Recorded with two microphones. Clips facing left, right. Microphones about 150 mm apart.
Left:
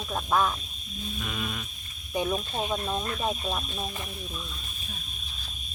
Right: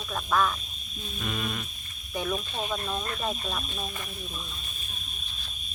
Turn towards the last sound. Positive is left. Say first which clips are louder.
# left 2 dB
turn(degrees=15)  # may be behind; listen again after turning